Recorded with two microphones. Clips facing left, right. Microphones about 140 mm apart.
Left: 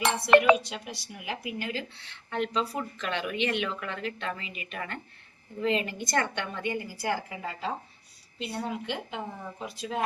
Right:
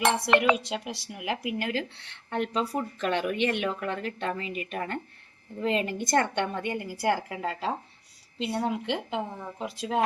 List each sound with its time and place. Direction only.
0.6 s speech: 90° right; by 7.7 s 70° right (ahead or behind)
8.4 s speech: 85° right